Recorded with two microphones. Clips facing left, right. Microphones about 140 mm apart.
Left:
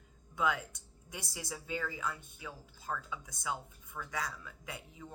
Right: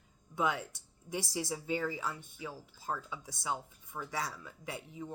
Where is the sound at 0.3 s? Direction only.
20° right (ahead or behind).